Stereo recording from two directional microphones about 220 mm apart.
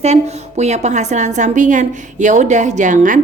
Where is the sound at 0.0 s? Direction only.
30° right (ahead or behind).